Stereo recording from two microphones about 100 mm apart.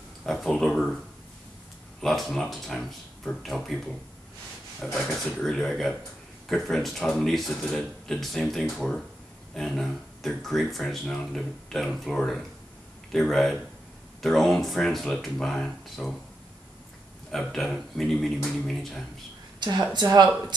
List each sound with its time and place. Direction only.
0.2 s speech: centre (ahead or behind)
2.0 s speech: centre (ahead or behind)
17.3 s speech: centre (ahead or behind)
19.9 s speech: 45° right (ahead or behind)